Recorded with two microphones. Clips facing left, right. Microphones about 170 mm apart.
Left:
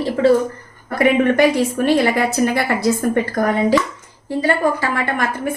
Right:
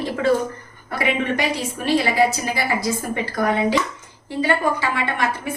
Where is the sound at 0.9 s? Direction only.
50° left (ahead or behind).